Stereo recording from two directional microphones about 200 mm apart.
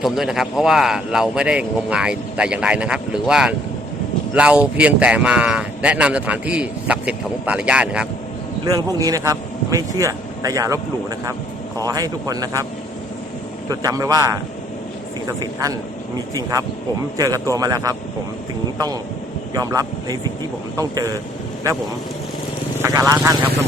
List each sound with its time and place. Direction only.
0.0 s speech: centre (ahead or behind)
8.6 s speech: 20° right (ahead or behind)
11.9 s speech: 20° right (ahead or behind)
13.7 s speech: 15° right (ahead or behind)
16.1 s speech: 20° right (ahead or behind)
19.5 s speech: 20° right (ahead or behind)
22.8 s speech: 15° right (ahead or behind)